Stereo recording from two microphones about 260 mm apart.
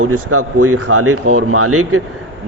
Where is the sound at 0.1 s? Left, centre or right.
Right.